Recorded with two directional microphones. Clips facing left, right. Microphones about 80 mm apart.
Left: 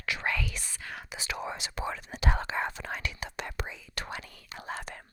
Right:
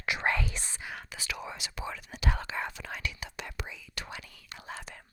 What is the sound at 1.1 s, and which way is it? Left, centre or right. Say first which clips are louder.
Whispering: left 7 dB; left.